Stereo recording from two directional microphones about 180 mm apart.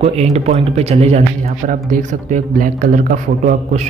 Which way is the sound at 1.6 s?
50° right (ahead or behind).